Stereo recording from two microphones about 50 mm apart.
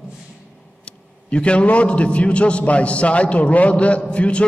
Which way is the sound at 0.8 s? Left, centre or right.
Left.